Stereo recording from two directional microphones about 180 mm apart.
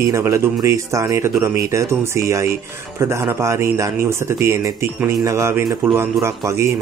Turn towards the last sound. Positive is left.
turn(degrees=-15)  # may be behind; listen again after turning